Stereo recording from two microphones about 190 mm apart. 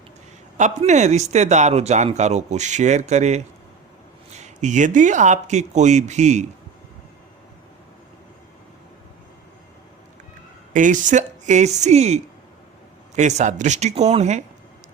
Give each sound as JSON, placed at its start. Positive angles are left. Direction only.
{"t": 0.5, "sound": "speech", "side_deg": -40}
{"t": 10.8, "sound": "speech", "side_deg": -40}